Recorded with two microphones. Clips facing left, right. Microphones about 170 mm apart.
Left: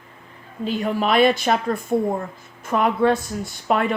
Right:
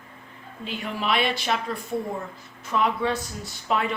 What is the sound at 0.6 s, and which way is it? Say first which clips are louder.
Speech: left 8 dB; 40° left (ahead or behind).